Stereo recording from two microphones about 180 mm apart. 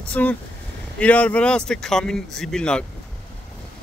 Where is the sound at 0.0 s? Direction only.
5° left (ahead or behind).